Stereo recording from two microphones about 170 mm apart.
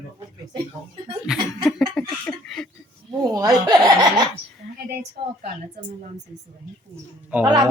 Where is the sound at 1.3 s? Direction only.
5° left (ahead or behind).